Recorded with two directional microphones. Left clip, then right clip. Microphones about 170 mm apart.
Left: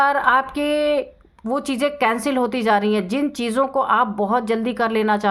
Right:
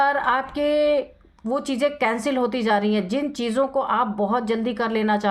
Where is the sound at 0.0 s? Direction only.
30° left (ahead or behind).